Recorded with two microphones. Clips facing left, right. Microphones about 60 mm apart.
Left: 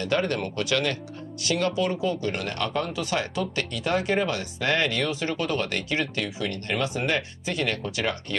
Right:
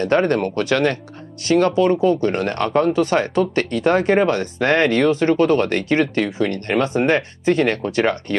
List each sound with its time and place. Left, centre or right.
0.0 s speech: right